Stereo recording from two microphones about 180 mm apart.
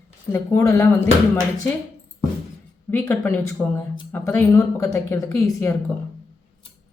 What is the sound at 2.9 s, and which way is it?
Speech, 10° left (ahead or behind).